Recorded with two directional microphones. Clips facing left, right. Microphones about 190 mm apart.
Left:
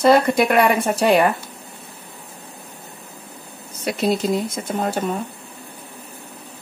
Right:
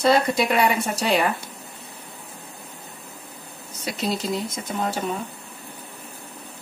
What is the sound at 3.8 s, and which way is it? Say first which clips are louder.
Speech: left 6 dB; 55° left (ahead or behind).